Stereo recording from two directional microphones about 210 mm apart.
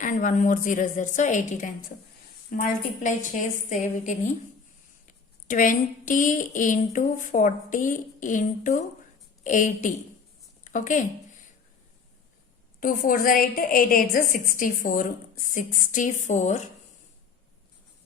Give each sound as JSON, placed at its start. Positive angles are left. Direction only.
{"t": 0.0, "sound": "a woman's voice", "side_deg": 40}
{"t": 10.6, "sound": "a sound", "side_deg": 35}
{"t": 12.8, "sound": "a woman's voice", "side_deg": 40}